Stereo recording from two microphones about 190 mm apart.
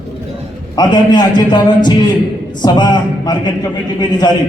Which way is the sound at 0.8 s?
25° left (ahead or behind).